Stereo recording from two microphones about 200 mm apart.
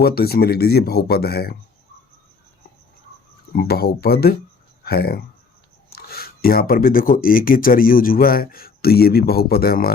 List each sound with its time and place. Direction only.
0.0 s speech: 50° left (ahead or behind)
3.5 s speech: 50° left (ahead or behind)